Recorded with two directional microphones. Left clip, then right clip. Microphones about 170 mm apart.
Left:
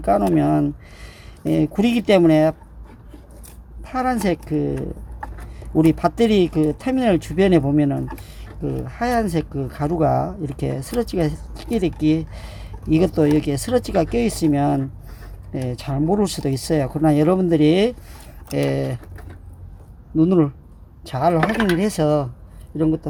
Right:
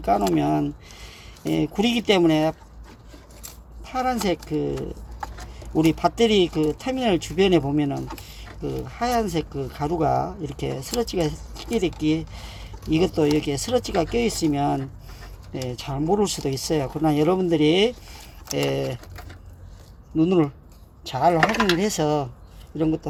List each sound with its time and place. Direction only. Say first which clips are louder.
0.0 s speech: left 3 dB; 40° left (ahead or behind)
3.8 s speech: left 3 dB; 45° left (ahead or behind)
5.7 s speech: left 3 dB; 45° left (ahead or behind)
20.1 s speech: left 3 dB; 35° left (ahead or behind)